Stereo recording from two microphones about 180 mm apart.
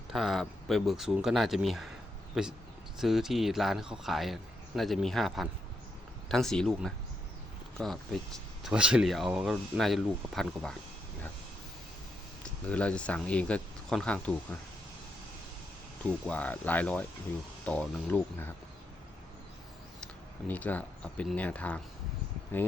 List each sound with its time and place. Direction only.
0.1 s speech: centre (ahead or behind)
12.4 s speech: 5° left (ahead or behind)
16.2 s speech: 10° left (ahead or behind)
20.5 s speech: 10° left (ahead or behind)